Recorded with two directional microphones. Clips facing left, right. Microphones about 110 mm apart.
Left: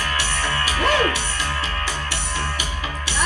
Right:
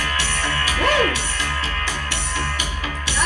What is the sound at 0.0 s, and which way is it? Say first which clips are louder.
Music: even; 15° left (ahead or behind).